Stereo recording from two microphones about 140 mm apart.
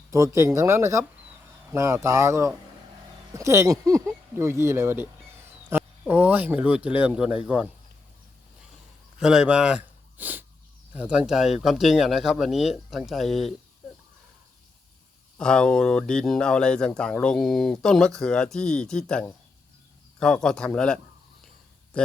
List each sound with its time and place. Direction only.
0.1 s speech: 20° right (ahead or behind)
9.2 s speech: 5° right (ahead or behind)
15.4 s speech: 5° left (ahead or behind)